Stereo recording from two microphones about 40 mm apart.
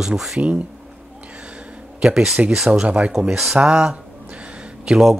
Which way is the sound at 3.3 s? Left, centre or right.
Centre.